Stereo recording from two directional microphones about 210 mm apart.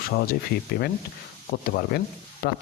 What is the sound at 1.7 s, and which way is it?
Sizzle, 45° left (ahead or behind).